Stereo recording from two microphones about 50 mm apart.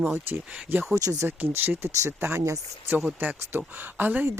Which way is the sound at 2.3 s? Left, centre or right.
Right.